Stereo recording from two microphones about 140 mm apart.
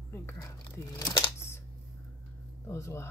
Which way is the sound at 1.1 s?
20° left (ahead or behind).